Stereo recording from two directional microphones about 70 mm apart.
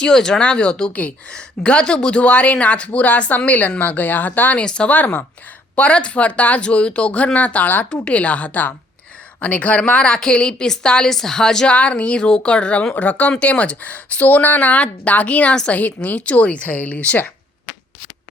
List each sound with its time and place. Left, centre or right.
0.0 s speech: centre